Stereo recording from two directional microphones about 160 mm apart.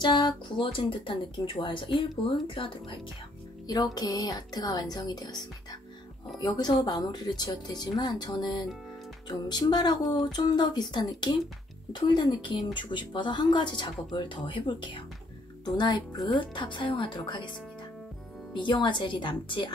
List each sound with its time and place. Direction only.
0.0 s speech: 30° left (ahead or behind)
18.5 s speech: 30° left (ahead or behind)